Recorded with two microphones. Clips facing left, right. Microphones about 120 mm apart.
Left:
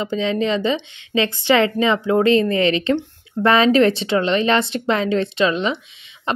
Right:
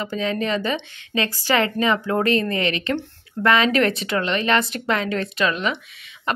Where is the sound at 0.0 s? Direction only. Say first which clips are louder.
Left 4 dB; 25° left (ahead or behind).